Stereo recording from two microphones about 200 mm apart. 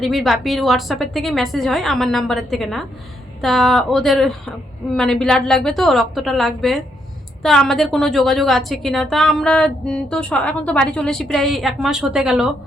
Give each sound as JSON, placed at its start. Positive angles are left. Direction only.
{"t": 0.0, "sound": "a woman's voice", "side_deg": 0}